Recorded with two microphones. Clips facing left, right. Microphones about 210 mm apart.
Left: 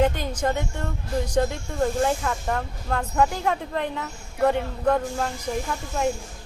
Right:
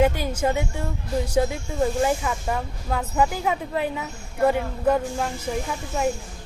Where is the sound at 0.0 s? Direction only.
10° right (ahead or behind).